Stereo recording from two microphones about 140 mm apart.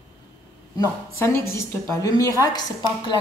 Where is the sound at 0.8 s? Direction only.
20° left (ahead or behind).